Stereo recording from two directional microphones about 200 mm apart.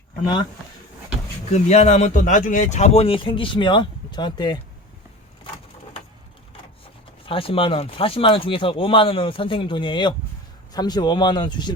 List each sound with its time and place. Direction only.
1.5 s speech: 35° left (ahead or behind)
7.3 s speech: 25° left (ahead or behind)